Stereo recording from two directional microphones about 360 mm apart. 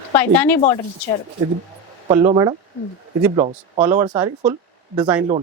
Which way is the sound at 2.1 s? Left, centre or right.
Centre.